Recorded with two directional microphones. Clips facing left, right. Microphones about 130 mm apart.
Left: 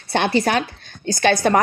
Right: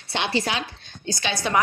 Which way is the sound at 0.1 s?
50° left (ahead or behind).